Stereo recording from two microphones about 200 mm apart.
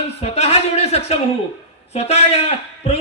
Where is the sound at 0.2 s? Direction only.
30° left (ahead or behind).